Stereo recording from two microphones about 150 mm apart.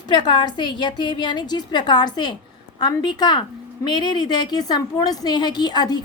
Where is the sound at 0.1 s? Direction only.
30° left (ahead or behind).